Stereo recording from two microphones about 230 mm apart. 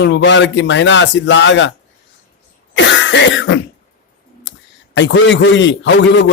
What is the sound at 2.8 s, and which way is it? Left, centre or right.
Cough, left.